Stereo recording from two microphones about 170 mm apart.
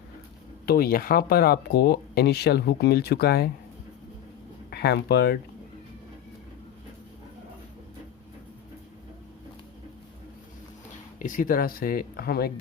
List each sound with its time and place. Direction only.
0.6 s speech: 60° left (ahead or behind)
4.7 s speech: 75° left (ahead or behind)
11.2 s speech: 50° left (ahead or behind)